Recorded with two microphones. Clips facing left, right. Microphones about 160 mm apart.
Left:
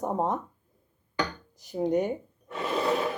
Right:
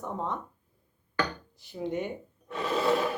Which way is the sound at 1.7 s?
40° left (ahead or behind).